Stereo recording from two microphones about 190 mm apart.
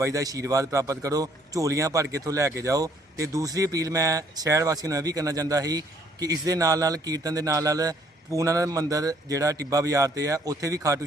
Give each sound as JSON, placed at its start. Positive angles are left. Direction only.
{"t": 0.0, "sound": "speech", "side_deg": -15}